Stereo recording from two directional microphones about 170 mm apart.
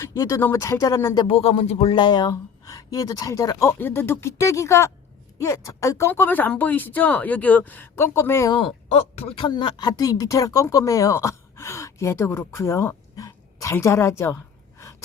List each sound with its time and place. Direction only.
0.0 s speech: 15° left (ahead or behind)
8.5 s speech: 35° left (ahead or behind); by 14.3 s 15° left (ahead or behind)